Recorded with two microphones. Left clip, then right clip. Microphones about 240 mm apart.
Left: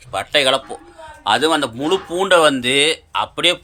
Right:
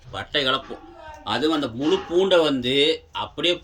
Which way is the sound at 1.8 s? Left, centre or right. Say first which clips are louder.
Left 3 dB; left.